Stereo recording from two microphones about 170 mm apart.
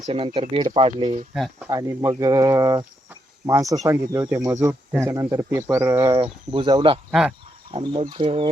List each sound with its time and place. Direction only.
0.1 s speech: 35° right (ahead or behind)
1.6 s speech: 15° right (ahead or behind)
6.1 s speech: 30° right (ahead or behind)
7.1 s speech: 5° right (ahead or behind)
7.7 s speech: 35° right (ahead or behind)